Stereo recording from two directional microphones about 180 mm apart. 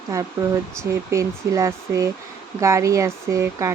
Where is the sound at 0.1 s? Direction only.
15° right (ahead or behind).